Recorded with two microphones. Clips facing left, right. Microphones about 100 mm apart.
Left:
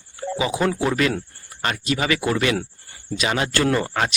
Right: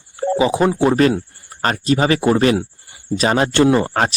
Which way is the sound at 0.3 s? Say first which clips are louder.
Right 6 dB; 30° right (ahead or behind).